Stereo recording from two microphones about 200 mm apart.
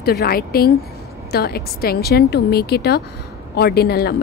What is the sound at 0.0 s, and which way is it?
Speech, 50° left (ahead or behind).